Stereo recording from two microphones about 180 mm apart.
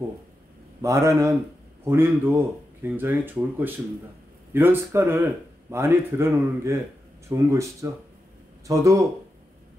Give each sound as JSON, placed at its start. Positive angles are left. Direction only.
{"t": 0.8, "sound": "speech", "side_deg": -15}